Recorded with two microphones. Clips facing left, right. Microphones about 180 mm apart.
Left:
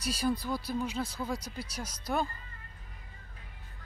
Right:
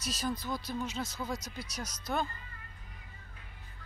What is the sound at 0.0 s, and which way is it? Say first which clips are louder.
Speech: left 5 dB; 10° left (ahead or behind).